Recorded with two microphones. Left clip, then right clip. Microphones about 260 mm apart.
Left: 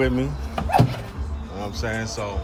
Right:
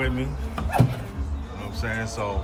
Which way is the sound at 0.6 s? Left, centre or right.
Left.